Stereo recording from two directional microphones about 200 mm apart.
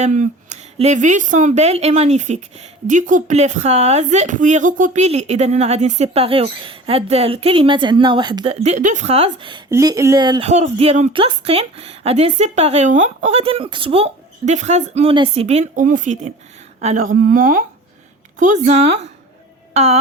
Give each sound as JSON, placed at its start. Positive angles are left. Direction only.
{"t": 0.0, "sound": "speech", "side_deg": -35}
{"t": 9.6, "sound": "speech", "side_deg": -15}
{"t": 10.5, "sound": "a woman's voice", "side_deg": -35}
{"t": 19.7, "sound": "music", "side_deg": -30}